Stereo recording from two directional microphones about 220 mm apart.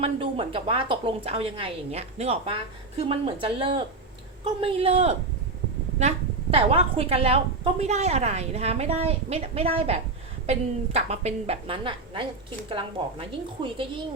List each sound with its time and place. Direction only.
0.0 s a woman's voice: 25° right (ahead or behind)